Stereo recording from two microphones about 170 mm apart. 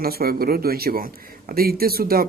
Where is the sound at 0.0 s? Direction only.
60° right (ahead or behind).